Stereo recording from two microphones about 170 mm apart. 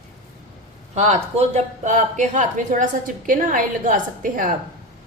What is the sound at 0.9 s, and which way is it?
Speech, 45° right (ahead or behind).